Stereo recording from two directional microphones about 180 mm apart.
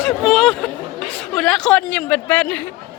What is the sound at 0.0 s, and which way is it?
Chatter, centre (ahead or behind).